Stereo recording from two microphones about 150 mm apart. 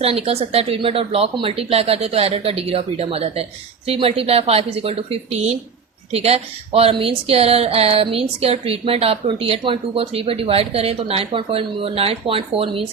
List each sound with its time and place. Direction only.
0.0 s speech: 40° right (ahead or behind)